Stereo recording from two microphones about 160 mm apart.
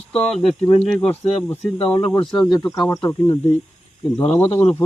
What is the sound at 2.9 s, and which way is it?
Speech, 15° left (ahead or behind).